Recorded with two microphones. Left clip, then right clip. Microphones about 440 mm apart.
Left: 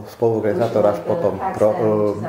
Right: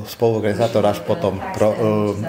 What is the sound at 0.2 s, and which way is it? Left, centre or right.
Speech, right.